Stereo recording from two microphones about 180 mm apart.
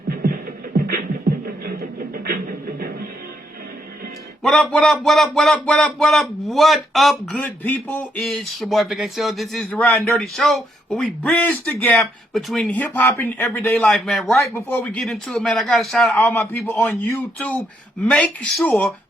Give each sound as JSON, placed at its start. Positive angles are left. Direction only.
{"t": 1.7, "sound": "a sound", "side_deg": -55}
{"t": 4.7, "sound": "speech", "side_deg": 0}
{"t": 14.4, "sound": "speech", "side_deg": 10}
{"t": 15.0, "sound": "speech", "side_deg": 0}
{"t": 16.3, "sound": "speech", "side_deg": 15}